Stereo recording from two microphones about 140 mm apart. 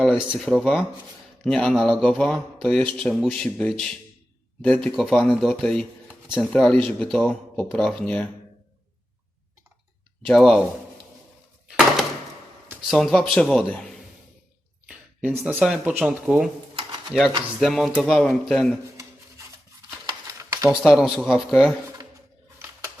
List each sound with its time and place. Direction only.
0.3 s speech: centre (ahead or behind)
6.1 s a sound: 5° right (ahead or behind)
6.5 s speech: 5° left (ahead or behind)
10.2 s speech: centre (ahead or behind)
12.9 s speech: centre (ahead or behind)
14.8 s a sound: 10° right (ahead or behind)
15.4 s speech: 10° right (ahead or behind)
20.1 s a sound: 25° right (ahead or behind)
20.8 s speech: centre (ahead or behind)